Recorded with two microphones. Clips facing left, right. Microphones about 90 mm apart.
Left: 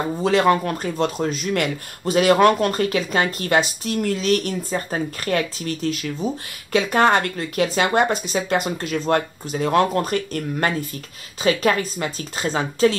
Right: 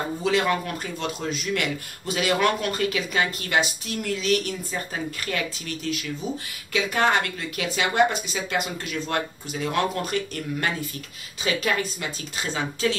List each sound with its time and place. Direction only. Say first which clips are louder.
0.2 s speech: left 6 dB; 40° left (ahead or behind)